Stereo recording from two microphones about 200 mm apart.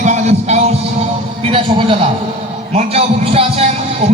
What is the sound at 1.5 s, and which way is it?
A man's voice, 30° right (ahead or behind).